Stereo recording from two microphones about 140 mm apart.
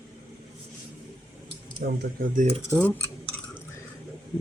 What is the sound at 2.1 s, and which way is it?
Speech, 75° right (ahead or behind).